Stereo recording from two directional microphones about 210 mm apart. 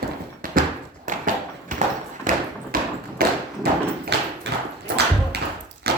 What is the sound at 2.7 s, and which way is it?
Thump, 40° right (ahead or behind).